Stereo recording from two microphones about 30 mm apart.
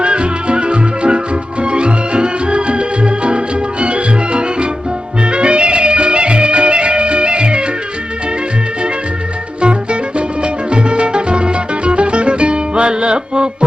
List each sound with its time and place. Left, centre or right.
0.0 s music: right
9.6 s music: right